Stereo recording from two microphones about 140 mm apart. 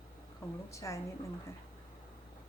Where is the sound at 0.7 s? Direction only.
20° left (ahead or behind).